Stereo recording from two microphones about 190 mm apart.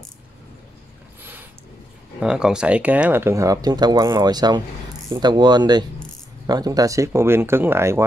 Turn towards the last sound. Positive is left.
turn(degrees=-15)  # may be behind; listen again after turning